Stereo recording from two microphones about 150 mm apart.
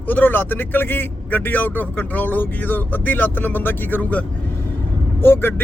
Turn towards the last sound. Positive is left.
turn(degrees=15)  # may be behind; listen again after turning